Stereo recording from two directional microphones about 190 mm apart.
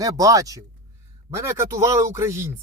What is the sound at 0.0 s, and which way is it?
A man's voice, 20° right (ahead or behind).